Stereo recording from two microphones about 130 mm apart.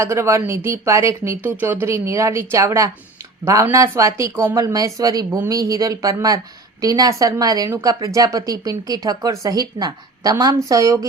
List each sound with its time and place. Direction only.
0.0 s speech: 20° right (ahead or behind)